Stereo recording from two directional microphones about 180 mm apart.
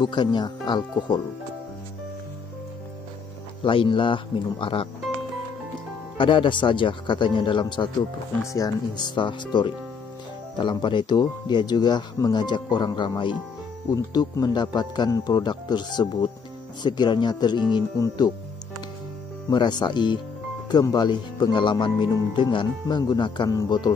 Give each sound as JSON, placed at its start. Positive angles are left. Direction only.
{"t": 0.0, "sound": "speech", "side_deg": 25}
{"t": 3.6, "sound": "speech", "side_deg": 30}
{"t": 6.1, "sound": "speech", "side_deg": 30}
{"t": 19.5, "sound": "speech", "side_deg": 25}